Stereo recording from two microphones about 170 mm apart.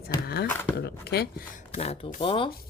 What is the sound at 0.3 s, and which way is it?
Speech, 70° left (ahead or behind).